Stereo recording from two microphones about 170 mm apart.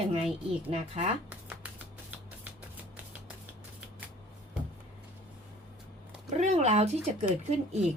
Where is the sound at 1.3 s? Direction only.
10° right (ahead or behind).